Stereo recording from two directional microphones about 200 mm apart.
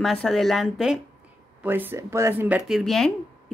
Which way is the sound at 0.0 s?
Centre (ahead or behind).